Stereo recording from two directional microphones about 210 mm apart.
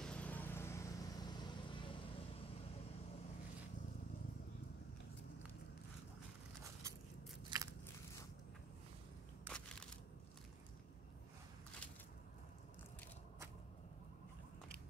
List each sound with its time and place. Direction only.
0.0 s vehicle: 5° left (ahead or behind); by 2.2 s 25° left (ahead or behind)
7.4 s biting: 15° right (ahead or behind)